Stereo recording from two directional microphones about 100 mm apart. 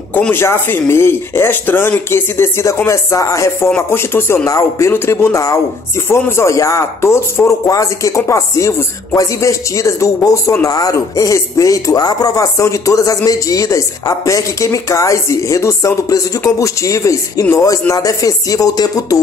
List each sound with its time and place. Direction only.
0.3 s speech: 25° left (ahead or behind)